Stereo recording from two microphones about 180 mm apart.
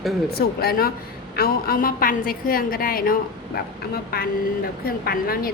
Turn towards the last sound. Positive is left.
turn(degrees=55)  # may be behind; listen again after turning